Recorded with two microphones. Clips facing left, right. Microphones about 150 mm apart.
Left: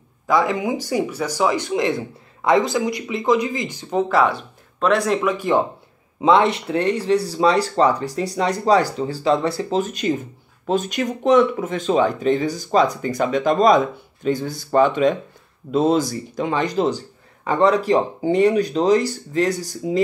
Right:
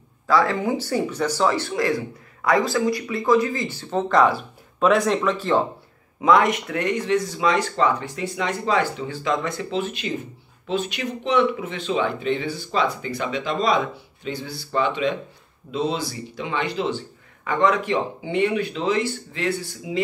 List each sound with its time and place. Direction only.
0.3 s speech: 15° left (ahead or behind)
4.2 s speech: 5° right (ahead or behind); by 5.7 s 15° left (ahead or behind)
6.2 s speech: 25° left (ahead or behind)